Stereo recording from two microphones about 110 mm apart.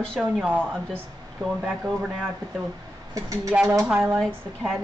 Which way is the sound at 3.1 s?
30° right (ahead or behind).